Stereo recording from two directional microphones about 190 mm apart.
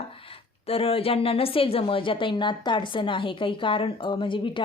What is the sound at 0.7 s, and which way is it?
A woman's voice, 30° left (ahead or behind).